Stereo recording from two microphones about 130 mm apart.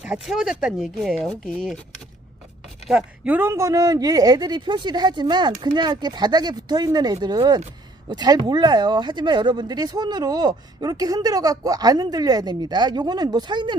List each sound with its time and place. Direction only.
0.0 s speech: 5° right (ahead or behind)
2.9 s speech: 10° right (ahead or behind); by 13.7 s 35° right (ahead or behind)